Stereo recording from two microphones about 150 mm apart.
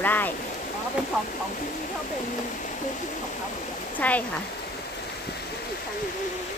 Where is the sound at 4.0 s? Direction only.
10° left (ahead or behind).